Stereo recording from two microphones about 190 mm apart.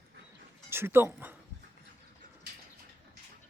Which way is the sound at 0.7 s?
10° right (ahead or behind).